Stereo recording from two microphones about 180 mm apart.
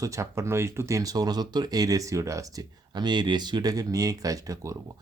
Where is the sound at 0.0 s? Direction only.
15° right (ahead or behind).